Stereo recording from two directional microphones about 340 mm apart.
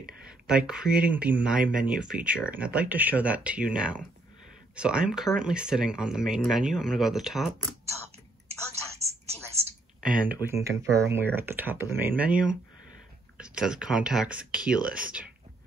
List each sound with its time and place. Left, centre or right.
0.2 s speech: centre
8.5 s telephone: centre
10.0 s speech: centre